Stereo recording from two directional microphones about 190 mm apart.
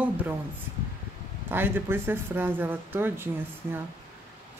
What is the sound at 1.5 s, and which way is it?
Speech, 10° right (ahead or behind).